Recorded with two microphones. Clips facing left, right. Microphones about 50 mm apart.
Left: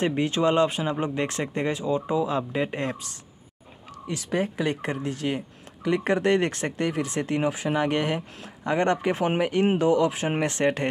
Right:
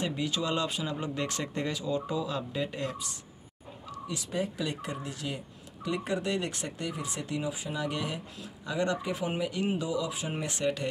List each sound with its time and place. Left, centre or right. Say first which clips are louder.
0.0 s speech: left 8 dB; left
4.1 s speech: left 7 dB; left